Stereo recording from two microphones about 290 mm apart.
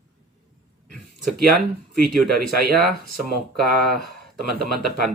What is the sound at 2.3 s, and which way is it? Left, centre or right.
Speech, right.